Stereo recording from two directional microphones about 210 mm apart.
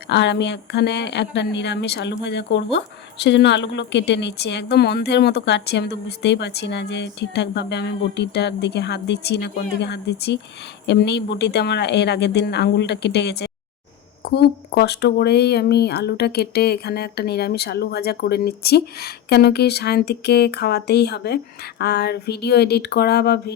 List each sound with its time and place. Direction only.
0.1 s speech: 55° left (ahead or behind)